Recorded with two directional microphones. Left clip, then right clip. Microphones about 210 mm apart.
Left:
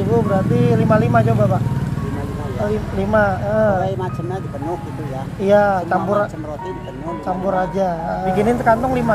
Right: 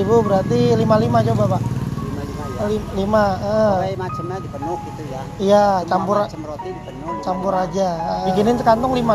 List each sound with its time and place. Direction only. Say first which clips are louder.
0.1 s speech: right 2 dB; 25° right (ahead or behind)
3.0 s a man's voice: left 1 dB; 15° right (ahead or behind)
5.5 s a man's voice: even; 15° right (ahead or behind)
7.2 s a man's voice: left 1 dB; 10° right (ahead or behind)
8.3 s speech: even; 20° right (ahead or behind)